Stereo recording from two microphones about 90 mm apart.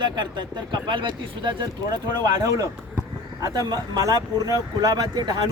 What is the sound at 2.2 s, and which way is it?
Speech, 45° right (ahead or behind).